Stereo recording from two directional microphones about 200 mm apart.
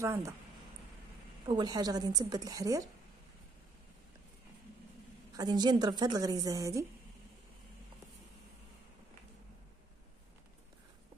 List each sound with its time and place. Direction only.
0.0 s speech: 15° right (ahead or behind)
1.5 s a woman's voice: 20° right (ahead or behind)
5.3 s a woman's voice: 20° right (ahead or behind)